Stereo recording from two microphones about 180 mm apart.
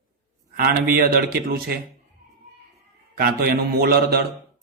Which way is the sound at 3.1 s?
60° right (ahead or behind).